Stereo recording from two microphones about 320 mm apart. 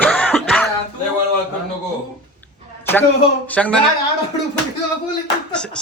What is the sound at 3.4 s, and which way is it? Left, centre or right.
Speech, centre.